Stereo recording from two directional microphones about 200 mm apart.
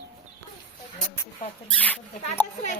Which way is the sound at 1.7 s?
5° left (ahead or behind).